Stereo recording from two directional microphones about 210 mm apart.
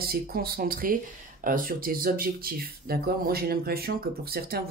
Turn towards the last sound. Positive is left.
turn(degrees=-45)  # may be behind; listen again after turning